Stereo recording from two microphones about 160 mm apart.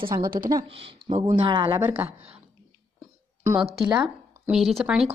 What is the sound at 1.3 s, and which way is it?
Speech, 30° right (ahead or behind).